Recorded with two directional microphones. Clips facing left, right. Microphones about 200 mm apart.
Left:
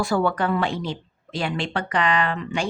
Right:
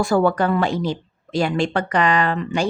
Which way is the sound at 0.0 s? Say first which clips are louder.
Right 4 dB; 45° right (ahead or behind).